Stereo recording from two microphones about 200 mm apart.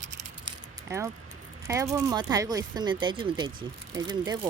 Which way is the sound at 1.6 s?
15° right (ahead or behind).